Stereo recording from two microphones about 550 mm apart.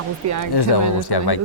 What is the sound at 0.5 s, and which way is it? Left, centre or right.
Speech, left.